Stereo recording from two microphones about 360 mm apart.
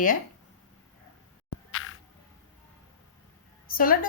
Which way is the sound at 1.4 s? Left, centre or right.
Left.